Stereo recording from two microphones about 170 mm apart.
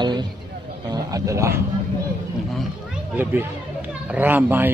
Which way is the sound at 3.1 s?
10° right (ahead or behind).